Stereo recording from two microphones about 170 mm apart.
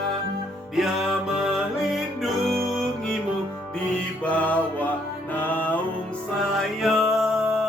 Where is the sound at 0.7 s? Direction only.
Centre (ahead or behind).